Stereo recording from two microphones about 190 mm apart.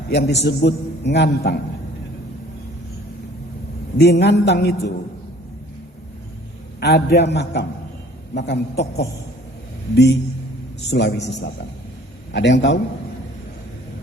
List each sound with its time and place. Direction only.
0.1 s a man's voice: 65° left (ahead or behind)
3.9 s a man's voice: 60° left (ahead or behind)
6.7 s a man's voice: 60° left (ahead or behind)